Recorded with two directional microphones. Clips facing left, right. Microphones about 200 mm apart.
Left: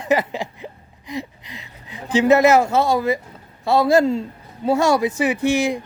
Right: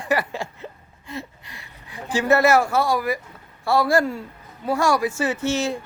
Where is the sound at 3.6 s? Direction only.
20° left (ahead or behind).